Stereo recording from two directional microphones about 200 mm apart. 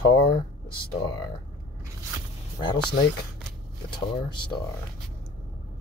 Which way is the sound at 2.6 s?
25° left (ahead or behind).